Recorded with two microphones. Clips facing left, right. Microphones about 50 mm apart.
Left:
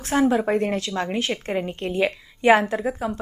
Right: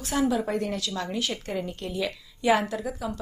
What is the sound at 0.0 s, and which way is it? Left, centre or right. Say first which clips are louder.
Speech: left 5 dB; left.